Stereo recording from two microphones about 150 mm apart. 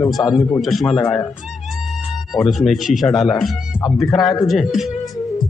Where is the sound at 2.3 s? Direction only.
Centre (ahead or behind).